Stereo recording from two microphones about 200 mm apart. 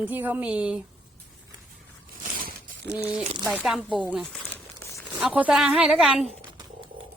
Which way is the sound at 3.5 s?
5° right (ahead or behind).